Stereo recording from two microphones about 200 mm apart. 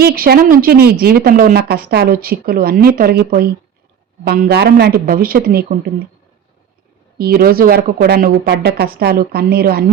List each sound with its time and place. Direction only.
0.0 s speech: 50° right (ahead or behind)
7.2 s speech: 50° right (ahead or behind)